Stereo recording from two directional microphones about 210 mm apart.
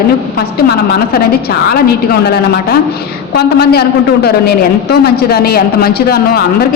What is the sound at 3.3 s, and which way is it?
A woman's voice, 50° left (ahead or behind).